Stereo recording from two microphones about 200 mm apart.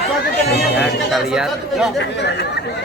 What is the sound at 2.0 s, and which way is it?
Speech, 60° left (ahead or behind).